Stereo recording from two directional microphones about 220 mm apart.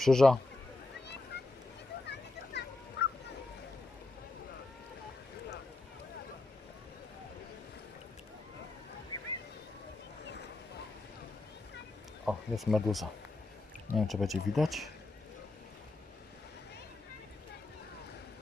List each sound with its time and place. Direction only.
0.0 s speech: centre (ahead or behind)
1.3 s a sound: 50° left (ahead or behind)
2.0 s children playing: 50° left (ahead or behind)
9.1 s boat: 20° left (ahead or behind)
12.2 s speech: centre (ahead or behind)